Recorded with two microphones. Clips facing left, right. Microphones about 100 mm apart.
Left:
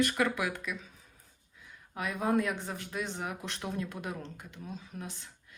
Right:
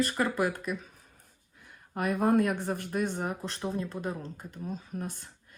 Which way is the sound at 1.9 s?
50° right (ahead or behind).